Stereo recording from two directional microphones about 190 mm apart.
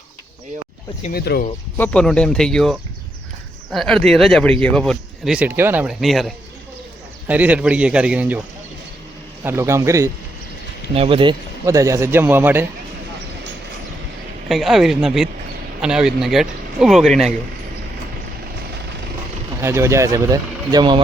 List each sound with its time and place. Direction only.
1.1 s speech: 55° left (ahead or behind)
1.8 s speech: 5° left (ahead or behind)
9.4 s speech: 15° right (ahead or behind)
10.9 s speech: 30° right (ahead or behind); by 12.6 s 10° right (ahead or behind)
14.4 s speech: centre (ahead or behind)
19.6 s speech: 15° right (ahead or behind)